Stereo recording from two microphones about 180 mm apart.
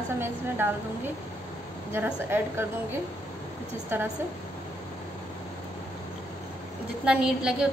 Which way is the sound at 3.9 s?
10° right (ahead or behind).